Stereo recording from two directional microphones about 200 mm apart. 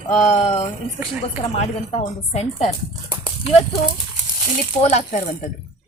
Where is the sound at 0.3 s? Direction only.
30° left (ahead or behind).